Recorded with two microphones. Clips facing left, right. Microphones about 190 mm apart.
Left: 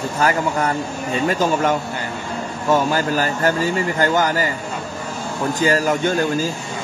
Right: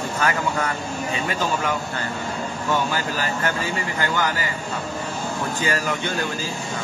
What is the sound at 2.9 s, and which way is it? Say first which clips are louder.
A man's voice: left 6 dB; 45° left (ahead or behind).